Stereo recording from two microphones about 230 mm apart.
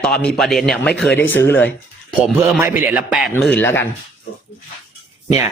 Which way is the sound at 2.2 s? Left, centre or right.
Centre.